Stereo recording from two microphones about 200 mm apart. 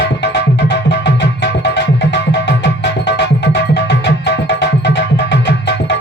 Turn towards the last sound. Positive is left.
turn(degrees=55)  # may be behind; listen again after turning